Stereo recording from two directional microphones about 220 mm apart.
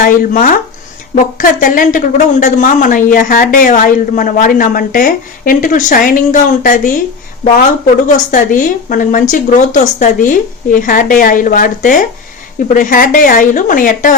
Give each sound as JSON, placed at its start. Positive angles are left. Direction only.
{"t": 0.0, "sound": "speech", "side_deg": 35}
{"t": 8.0, "sound": "speech", "side_deg": 35}